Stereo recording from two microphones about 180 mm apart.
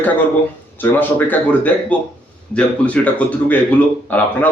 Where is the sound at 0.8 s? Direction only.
10° left (ahead or behind).